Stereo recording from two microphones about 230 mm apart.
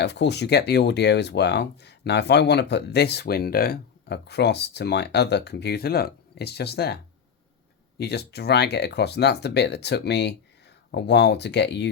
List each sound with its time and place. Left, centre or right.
0.0 s speech: left